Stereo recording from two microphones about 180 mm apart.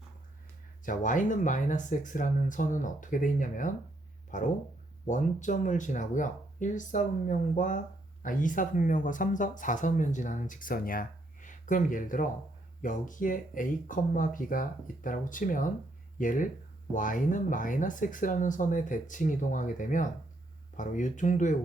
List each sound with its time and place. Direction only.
0.9 s speech: 45° left (ahead or behind)